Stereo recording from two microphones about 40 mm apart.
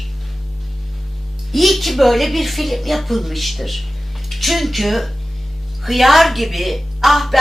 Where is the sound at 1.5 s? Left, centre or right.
Centre.